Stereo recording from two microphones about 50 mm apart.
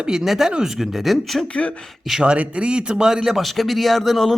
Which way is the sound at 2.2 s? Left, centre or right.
Right.